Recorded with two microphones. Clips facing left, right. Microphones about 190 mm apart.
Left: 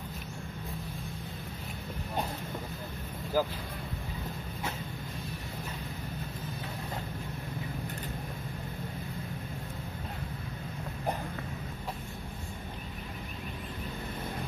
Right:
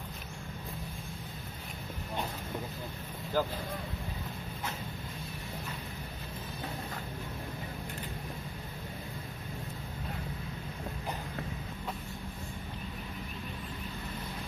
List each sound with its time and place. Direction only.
3.4 s speech: 5° left (ahead or behind)